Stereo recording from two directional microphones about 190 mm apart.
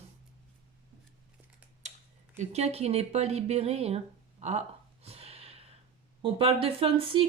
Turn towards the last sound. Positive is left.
turn(degrees=-30)  # may be behind; listen again after turning